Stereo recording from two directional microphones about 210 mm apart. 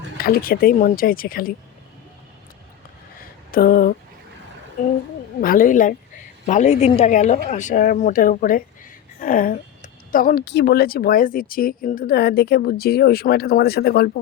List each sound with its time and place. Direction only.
0.2 s speech: 45° left (ahead or behind)
3.5 s speech: 45° left (ahead or behind)
5.4 s a woman's voice: 40° left (ahead or behind)